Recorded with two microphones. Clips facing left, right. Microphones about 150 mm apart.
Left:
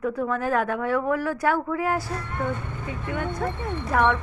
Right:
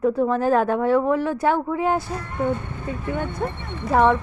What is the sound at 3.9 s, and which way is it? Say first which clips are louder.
Speech: right 5 dB; 30° right (ahead or behind).